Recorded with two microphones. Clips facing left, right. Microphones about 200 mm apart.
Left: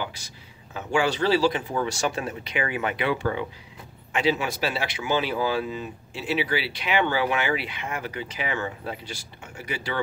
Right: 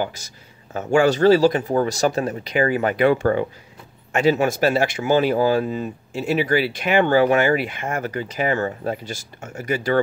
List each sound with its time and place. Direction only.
0.0 s speech: 45° right (ahead or behind)